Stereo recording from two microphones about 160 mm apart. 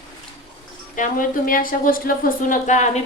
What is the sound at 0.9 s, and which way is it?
A woman's voice, 55° left (ahead or behind).